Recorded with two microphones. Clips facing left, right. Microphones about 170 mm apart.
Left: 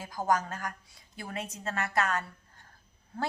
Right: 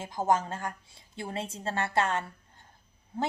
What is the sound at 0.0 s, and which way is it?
A woman's voice, 25° right (ahead or behind).